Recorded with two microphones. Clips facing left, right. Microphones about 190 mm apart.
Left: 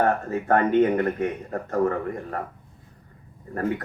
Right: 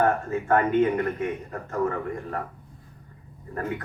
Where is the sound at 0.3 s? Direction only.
40° left (ahead or behind).